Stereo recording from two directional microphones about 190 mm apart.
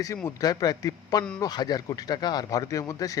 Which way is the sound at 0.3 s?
20° left (ahead or behind).